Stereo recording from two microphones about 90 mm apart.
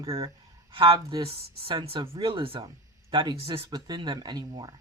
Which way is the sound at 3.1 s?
60° right (ahead or behind).